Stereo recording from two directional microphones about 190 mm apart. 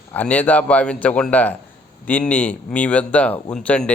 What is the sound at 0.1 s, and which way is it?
Speech, 10° left (ahead or behind).